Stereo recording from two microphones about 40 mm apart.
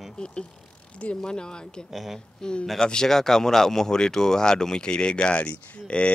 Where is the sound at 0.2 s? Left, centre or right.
Left.